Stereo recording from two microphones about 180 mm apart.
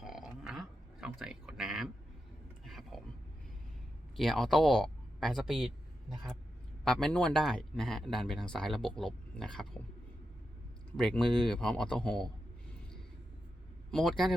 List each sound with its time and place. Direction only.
0.0 s a sound: centre (ahead or behind)
4.2 s speech: centre (ahead or behind)
10.9 s speech: centre (ahead or behind)
13.9 s speech: centre (ahead or behind)